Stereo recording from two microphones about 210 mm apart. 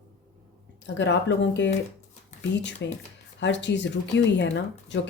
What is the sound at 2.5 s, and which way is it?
Speech, 55° left (ahead or behind).